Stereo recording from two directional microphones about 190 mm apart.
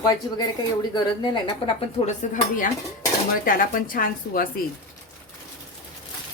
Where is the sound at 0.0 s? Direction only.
20° left (ahead or behind).